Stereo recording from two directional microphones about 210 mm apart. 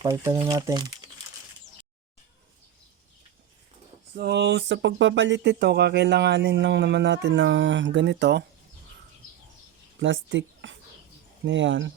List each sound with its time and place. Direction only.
0.0 s speech: 15° right (ahead or behind)
4.2 s speech: 55° right (ahead or behind)
10.0 s speech: 60° right (ahead or behind)